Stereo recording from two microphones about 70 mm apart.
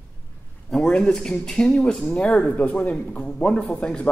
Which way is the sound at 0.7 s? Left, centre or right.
Centre.